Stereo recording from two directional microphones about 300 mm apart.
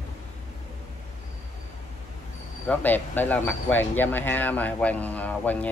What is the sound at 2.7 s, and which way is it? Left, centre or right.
A man's voice, centre.